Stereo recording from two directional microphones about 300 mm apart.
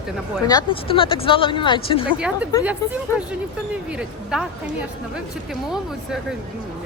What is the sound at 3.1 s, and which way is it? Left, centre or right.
Speech, centre.